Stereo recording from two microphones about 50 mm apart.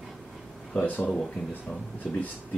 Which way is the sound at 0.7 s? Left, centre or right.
Left.